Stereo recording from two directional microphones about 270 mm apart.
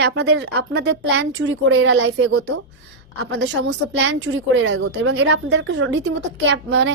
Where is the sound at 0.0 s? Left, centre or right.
Right.